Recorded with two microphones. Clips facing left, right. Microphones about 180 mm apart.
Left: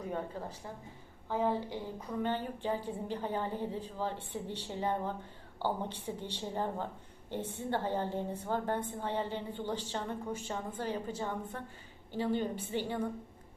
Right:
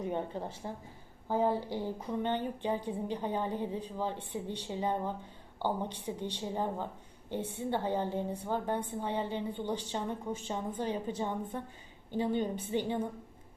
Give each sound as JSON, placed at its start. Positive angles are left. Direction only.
{"t": 0.0, "sound": "a woman's voice", "side_deg": -25}